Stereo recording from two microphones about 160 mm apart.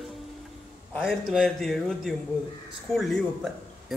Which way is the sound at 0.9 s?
Centre (ahead or behind).